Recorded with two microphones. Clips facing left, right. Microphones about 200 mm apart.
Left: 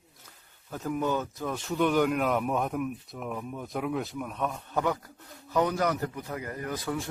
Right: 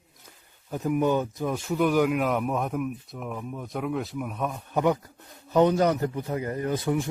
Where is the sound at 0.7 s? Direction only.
15° right (ahead or behind).